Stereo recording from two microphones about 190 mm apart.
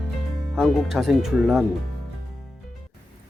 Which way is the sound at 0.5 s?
Centre (ahead or behind).